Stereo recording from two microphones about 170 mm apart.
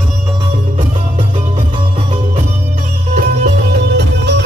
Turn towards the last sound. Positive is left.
turn(degrees=-85)